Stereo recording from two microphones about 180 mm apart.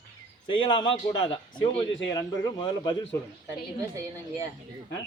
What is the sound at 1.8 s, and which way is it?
Speech, 90° left.